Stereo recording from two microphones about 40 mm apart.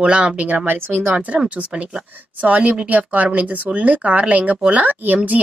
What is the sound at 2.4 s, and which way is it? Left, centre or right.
Speech, right.